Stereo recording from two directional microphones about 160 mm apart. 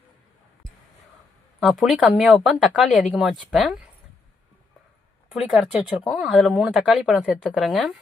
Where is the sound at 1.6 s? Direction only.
Centre (ahead or behind).